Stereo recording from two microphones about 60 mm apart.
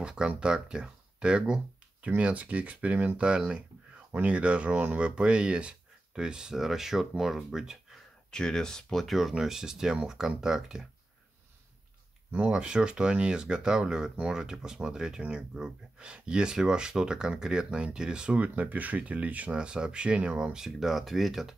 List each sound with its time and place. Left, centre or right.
0.0 s speech: centre
8.3 s speech: centre
12.3 s speech: centre
20.5 s speech: centre